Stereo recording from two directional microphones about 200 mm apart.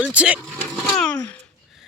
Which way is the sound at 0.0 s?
5° right (ahead or behind).